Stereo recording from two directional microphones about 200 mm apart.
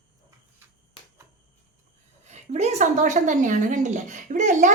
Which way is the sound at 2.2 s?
35° right (ahead or behind).